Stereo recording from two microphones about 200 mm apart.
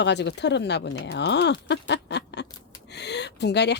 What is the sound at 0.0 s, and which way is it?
Speech, 60° left (ahead or behind).